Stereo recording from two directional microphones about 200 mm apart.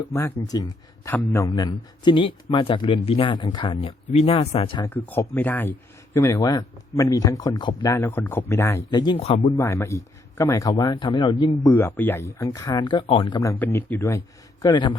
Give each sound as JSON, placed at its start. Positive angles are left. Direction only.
{"t": 0.0, "sound": "a man's voice", "side_deg": 15}
{"t": 4.9, "sound": "a man's voice", "side_deg": 10}
{"t": 9.6, "sound": "a man's voice", "side_deg": 15}
{"t": 11.7, "sound": "speech", "side_deg": 10}
{"t": 14.6, "sound": "a man's voice", "side_deg": 20}